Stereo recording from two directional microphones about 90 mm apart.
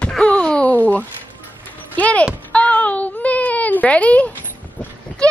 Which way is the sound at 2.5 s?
15° left (ahead or behind).